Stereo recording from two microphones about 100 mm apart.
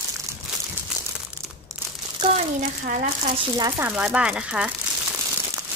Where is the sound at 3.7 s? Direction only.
15° right (ahead or behind).